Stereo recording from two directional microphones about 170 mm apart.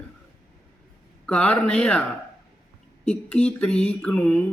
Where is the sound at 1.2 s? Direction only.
5° left (ahead or behind).